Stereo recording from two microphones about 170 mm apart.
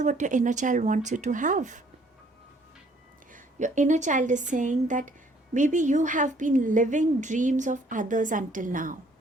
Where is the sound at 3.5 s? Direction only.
45° right (ahead or behind).